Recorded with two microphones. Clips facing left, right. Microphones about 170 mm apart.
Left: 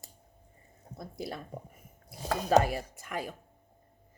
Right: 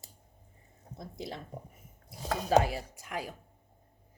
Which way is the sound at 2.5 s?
50° left (ahead or behind).